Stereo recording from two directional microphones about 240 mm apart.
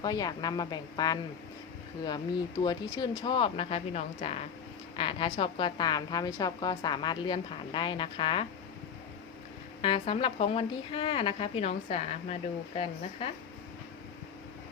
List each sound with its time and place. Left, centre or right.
0.0 s a woman's voice: centre
9.8 s a woman's voice: left